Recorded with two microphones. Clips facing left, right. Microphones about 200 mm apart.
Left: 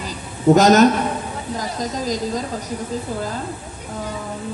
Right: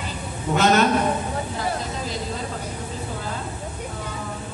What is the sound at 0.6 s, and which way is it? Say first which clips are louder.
Speech: left 5 dB; 40° left (ahead or behind).